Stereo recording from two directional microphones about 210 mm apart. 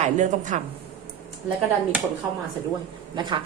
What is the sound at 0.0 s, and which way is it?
Speech, 35° right (ahead or behind).